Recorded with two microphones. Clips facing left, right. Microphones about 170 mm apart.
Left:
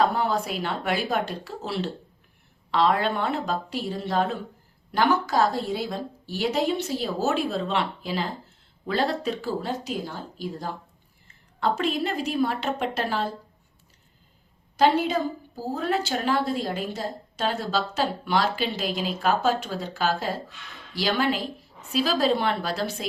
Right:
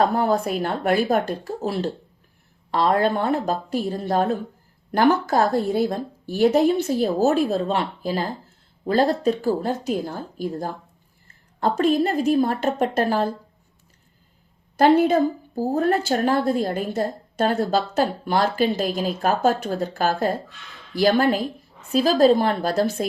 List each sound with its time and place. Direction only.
0.0 s speech: 50° right (ahead or behind)
14.8 s speech: 55° right (ahead or behind)